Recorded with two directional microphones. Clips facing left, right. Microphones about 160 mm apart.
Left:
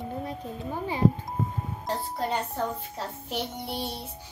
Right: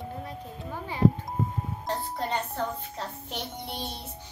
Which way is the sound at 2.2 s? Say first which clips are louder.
Left 3 dB; 5° left (ahead or behind).